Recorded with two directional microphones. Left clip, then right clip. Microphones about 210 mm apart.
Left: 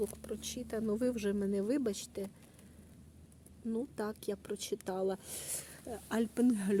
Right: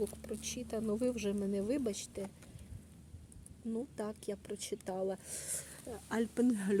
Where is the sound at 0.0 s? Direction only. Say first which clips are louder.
Left 1 dB; 25° left (ahead or behind).